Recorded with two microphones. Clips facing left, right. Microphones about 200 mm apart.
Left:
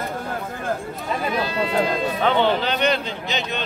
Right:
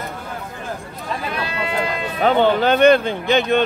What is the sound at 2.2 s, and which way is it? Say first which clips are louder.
Speech: right 6 dB; 45° right (ahead or behind).